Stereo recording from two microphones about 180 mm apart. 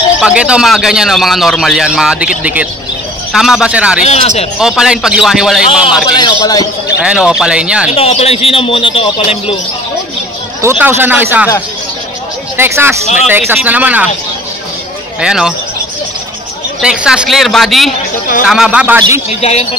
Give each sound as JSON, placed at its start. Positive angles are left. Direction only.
{"t": 0.2, "sound": "speech", "side_deg": -5}
{"t": 4.0, "sound": "a man's voice", "side_deg": 35}
{"t": 4.6, "sound": "speech", "side_deg": -5}
{"t": 6.1, "sound": "a man's voice", "side_deg": 20}
{"t": 7.0, "sound": "speech", "side_deg": -5}
{"t": 7.9, "sound": "a man's voice", "side_deg": 35}
{"t": 10.6, "sound": "speech", "side_deg": -15}
{"t": 12.5, "sound": "speech", "side_deg": -15}
{"t": 15.1, "sound": "speech", "side_deg": -5}
{"t": 16.8, "sound": "speech", "side_deg": -5}
{"t": 19.2, "sound": "a man's voice", "side_deg": 35}